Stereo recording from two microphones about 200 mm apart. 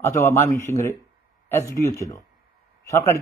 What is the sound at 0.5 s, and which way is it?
A man's voice, 15° left (ahead or behind).